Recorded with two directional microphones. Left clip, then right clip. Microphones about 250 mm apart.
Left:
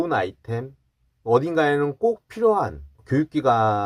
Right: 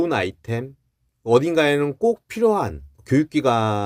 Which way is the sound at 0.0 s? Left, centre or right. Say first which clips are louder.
Right 1 dB; right.